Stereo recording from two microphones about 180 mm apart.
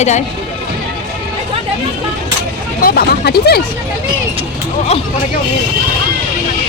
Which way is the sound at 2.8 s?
60° left (ahead or behind).